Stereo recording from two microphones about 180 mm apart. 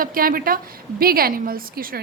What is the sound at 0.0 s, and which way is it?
A woman's voice, 55° right (ahead or behind).